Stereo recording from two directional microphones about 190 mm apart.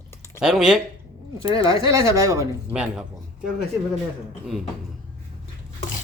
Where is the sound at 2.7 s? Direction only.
5° right (ahead or behind).